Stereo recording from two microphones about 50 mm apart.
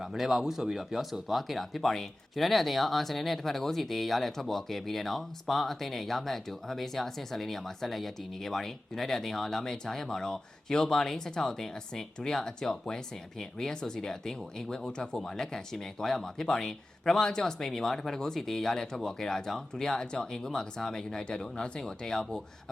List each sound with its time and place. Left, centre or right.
0.0 s speech: centre